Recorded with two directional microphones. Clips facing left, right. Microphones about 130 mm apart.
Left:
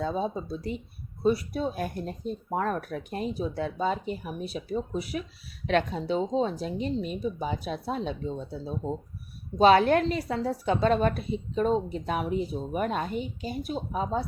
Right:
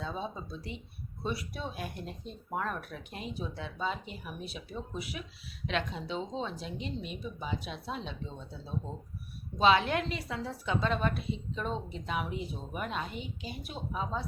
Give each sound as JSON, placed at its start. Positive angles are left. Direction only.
{"t": 0.0, "sound": "a woman's voice", "side_deg": 45}